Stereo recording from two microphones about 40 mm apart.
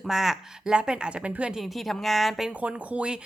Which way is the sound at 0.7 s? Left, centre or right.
Right.